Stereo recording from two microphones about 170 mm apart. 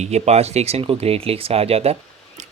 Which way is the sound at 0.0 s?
40° right (ahead or behind).